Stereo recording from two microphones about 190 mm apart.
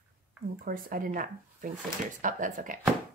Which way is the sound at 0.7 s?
45° right (ahead or behind).